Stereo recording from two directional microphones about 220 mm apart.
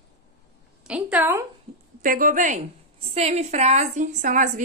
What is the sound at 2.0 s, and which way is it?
A woman's voice, 40° right (ahead or behind).